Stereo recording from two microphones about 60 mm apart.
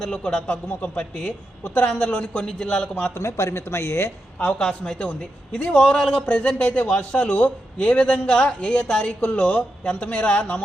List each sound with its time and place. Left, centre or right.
0.0 s a man's voice: centre
3.2 s speech: left
4.4 s a man's voice: left